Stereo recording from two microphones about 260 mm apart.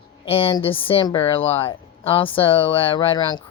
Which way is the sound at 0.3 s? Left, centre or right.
Left.